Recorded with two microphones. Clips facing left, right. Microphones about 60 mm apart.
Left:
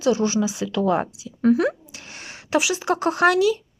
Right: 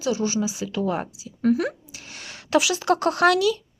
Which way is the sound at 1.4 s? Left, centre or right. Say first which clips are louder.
Left 3 dB; left.